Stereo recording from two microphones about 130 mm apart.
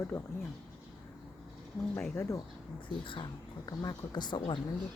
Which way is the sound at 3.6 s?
30° left (ahead or behind).